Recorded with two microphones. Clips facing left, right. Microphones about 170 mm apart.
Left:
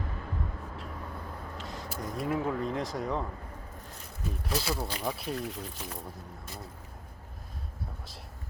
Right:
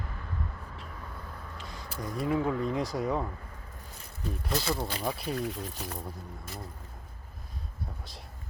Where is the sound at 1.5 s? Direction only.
Centre (ahead or behind).